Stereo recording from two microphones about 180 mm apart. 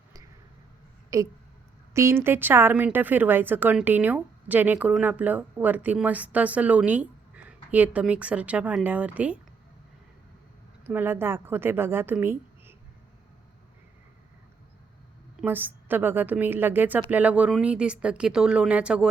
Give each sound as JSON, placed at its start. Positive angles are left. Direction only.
{"t": 1.1, "sound": "speech", "side_deg": -15}
{"t": 10.8, "sound": "speech", "side_deg": -10}
{"t": 15.4, "sound": "speech", "side_deg": -10}